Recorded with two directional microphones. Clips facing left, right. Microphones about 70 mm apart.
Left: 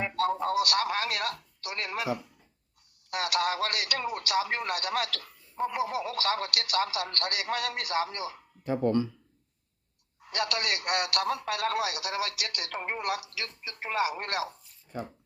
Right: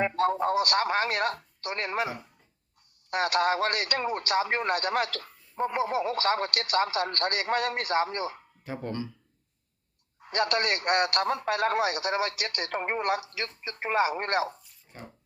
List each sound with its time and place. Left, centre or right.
0.0 s a man's voice: right
10.2 s a man's voice: right